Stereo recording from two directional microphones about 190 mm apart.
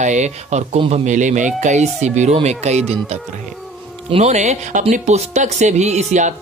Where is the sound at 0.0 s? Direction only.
40° right (ahead or behind).